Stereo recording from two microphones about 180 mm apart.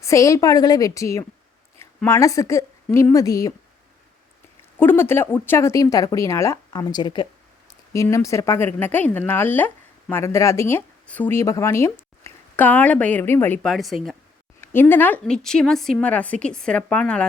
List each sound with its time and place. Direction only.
0.0 s speech: 15° left (ahead or behind)
4.8 s speech: 10° left (ahead or behind)
13.6 s a woman's voice: centre (ahead or behind)
14.6 s speech: 10° left (ahead or behind)